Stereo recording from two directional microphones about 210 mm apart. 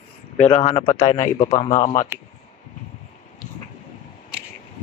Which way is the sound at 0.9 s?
35° left (ahead or behind).